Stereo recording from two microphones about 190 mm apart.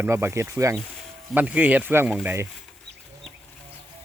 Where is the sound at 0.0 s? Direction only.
15° right (ahead or behind).